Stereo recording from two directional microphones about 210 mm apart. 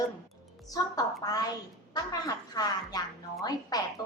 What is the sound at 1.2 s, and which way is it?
A woman's voice, 20° left (ahead or behind).